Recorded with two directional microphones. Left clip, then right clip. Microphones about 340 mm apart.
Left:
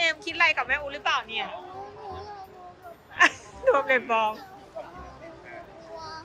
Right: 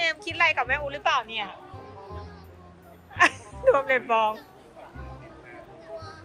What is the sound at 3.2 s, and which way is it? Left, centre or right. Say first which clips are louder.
Speech: even; centre.